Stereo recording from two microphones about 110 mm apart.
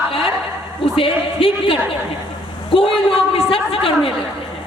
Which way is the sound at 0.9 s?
55° left (ahead or behind).